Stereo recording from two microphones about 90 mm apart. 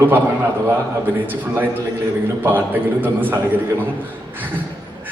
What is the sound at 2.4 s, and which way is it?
Speech, 20° right (ahead or behind).